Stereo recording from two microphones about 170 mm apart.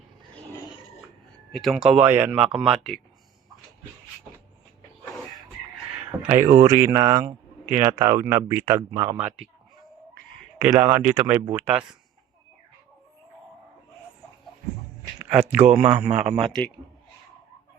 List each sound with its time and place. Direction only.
1.5 s speech: centre (ahead or behind)
6.1 s speech: 15° right (ahead or behind)
10.6 s speech: 15° right (ahead or behind)
15.3 s speech: 5° right (ahead or behind)
15.8 s speech: 40° right (ahead or behind)
16.5 s speech: 5° left (ahead or behind)